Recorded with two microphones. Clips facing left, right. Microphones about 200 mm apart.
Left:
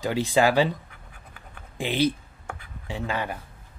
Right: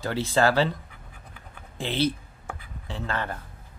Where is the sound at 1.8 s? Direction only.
15° left (ahead or behind).